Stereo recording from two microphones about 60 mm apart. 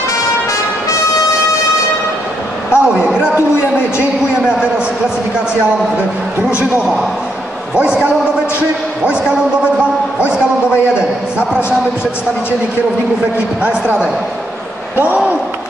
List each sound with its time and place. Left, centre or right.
2.7 s a sound: left
7.7 s a man's voice: centre
13.6 s speech: centre